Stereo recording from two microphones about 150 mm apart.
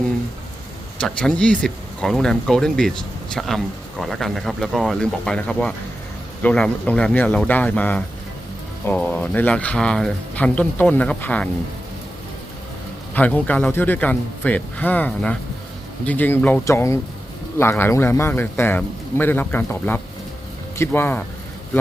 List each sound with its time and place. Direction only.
0.9 s speech: 5° left (ahead or behind)
13.1 s speech: 10° left (ahead or behind)